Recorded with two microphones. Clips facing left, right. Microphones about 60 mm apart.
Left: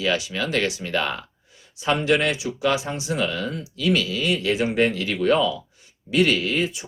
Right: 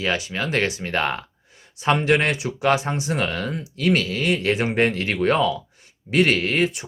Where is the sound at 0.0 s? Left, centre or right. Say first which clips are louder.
Even; right.